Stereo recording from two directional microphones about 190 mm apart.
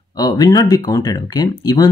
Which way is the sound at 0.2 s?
20° left (ahead or behind).